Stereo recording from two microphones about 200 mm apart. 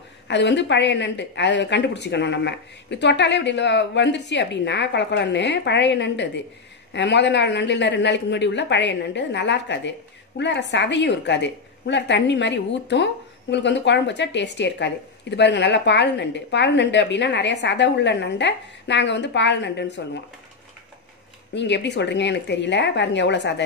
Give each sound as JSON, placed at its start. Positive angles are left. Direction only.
{"t": 0.3, "sound": "a woman's voice", "side_deg": 60}
{"t": 21.5, "sound": "a woman's voice", "side_deg": 60}